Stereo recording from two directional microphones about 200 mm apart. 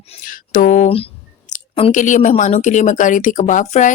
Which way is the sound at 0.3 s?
40° left (ahead or behind).